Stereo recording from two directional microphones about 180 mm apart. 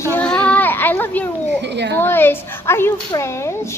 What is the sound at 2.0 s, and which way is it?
A woman's voice, 10° left (ahead or behind).